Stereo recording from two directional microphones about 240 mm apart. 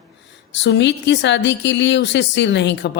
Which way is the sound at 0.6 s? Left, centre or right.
Left.